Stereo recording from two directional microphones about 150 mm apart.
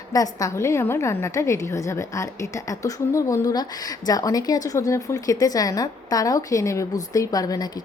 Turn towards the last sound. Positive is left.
turn(degrees=25)  # may be behind; listen again after turning